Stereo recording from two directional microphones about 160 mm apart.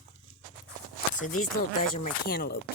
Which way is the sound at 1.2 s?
55° left (ahead or behind).